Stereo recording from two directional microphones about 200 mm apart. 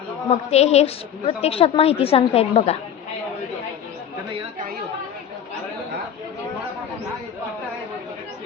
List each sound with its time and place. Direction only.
0.3 s a woman's voice: 30° left (ahead or behind)